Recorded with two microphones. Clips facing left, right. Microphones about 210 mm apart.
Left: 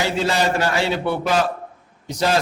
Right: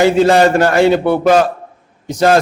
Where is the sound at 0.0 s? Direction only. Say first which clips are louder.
Right 11 dB; 55° right (ahead or behind).